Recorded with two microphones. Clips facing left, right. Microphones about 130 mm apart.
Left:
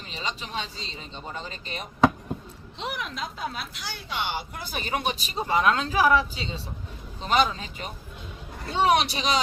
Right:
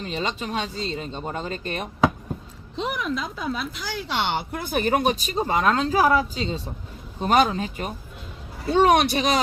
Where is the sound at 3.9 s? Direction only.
80° right.